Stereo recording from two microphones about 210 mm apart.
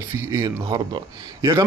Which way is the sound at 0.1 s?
15° right (ahead or behind).